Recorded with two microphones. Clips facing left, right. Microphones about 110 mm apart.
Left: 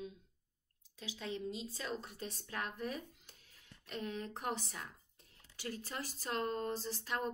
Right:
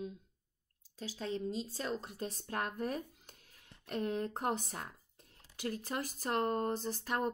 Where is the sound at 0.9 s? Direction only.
40° right (ahead or behind).